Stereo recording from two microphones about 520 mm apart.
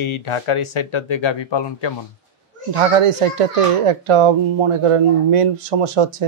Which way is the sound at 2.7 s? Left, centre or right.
Right.